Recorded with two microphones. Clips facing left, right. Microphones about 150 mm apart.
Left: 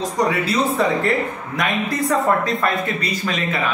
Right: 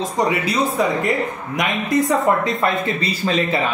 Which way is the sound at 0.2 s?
20° right (ahead or behind).